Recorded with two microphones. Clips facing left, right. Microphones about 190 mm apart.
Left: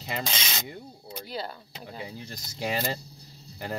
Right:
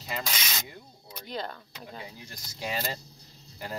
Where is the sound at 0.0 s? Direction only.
25° left (ahead or behind).